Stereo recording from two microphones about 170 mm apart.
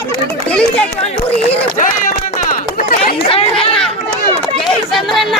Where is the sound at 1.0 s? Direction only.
45° left (ahead or behind).